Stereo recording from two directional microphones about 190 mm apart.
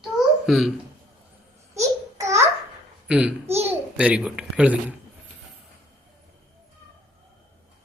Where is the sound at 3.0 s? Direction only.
5° right (ahead or behind).